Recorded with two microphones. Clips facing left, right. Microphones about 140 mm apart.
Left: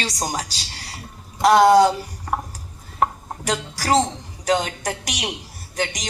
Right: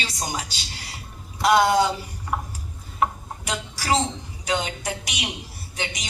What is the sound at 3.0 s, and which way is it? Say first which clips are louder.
Chopping: left 2 dB; 40° left (ahead or behind).